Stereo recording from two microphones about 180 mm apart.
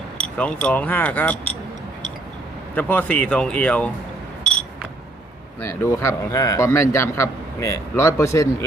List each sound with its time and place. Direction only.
0.2 s a man's voice: 5° left (ahead or behind)
2.7 s a man's voice: 10° left (ahead or behind)
5.6 s a man's voice: 15° left (ahead or behind)